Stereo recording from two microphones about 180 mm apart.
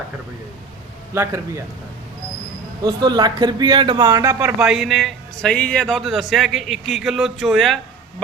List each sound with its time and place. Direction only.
1.1 s a man's voice: 15° right (ahead or behind)
2.8 s speech: 25° right (ahead or behind)
4.6 s a man's voice: centre (ahead or behind)